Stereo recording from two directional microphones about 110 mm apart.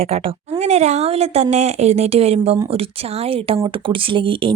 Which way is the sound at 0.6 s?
90° right.